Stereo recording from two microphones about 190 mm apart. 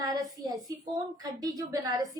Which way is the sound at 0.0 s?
20° right (ahead or behind).